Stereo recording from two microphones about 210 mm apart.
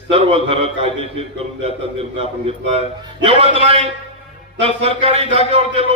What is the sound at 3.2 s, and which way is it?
A man's voice, 25° right (ahead or behind).